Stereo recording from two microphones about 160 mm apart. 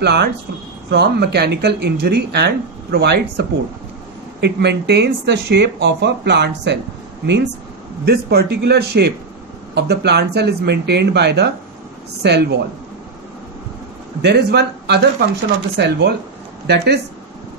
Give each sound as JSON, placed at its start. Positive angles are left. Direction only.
{"t": 0.0, "sound": "speech", "side_deg": -90}
{"t": 8.0, "sound": "speech", "side_deg": -90}
{"t": 14.2, "sound": "speech", "side_deg": -90}